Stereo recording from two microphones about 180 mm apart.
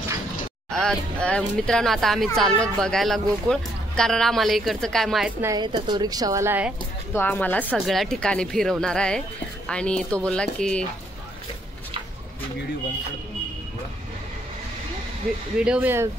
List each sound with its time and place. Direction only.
0.7 s speech: 5° left (ahead or behind)
5.4 s a woman's voice: 20° right (ahead or behind)
7.2 s speech: 10° left (ahead or behind)
15.6 s speech: 5° right (ahead or behind)